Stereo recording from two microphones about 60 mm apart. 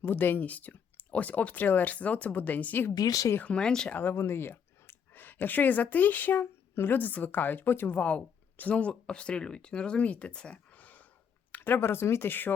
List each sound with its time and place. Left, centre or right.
0.0 s speech: left
2.9 s speech: left
3.4 s speech: centre
3.8 s speech: left
4.1 s speech: left
7.9 s speech: left
11.5 s speech: left